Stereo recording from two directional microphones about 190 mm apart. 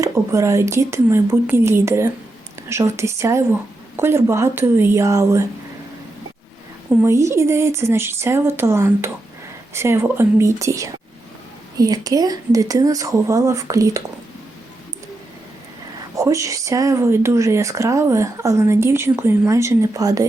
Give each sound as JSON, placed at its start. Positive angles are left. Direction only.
{"t": 0.0, "sound": "speech", "side_deg": -15}
{"t": 7.0, "sound": "speech", "side_deg": -15}
{"t": 16.1, "sound": "speech", "side_deg": -15}